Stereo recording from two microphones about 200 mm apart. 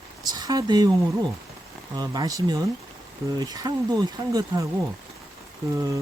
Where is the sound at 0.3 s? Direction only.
20° right (ahead or behind).